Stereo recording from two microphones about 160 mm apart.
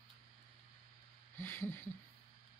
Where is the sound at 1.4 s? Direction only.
15° left (ahead or behind).